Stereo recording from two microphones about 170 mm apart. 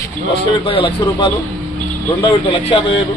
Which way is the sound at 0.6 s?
30° left (ahead or behind).